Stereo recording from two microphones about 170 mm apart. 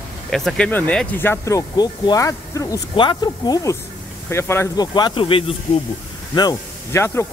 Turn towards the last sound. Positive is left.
turn(degrees=15)  # may be behind; listen again after turning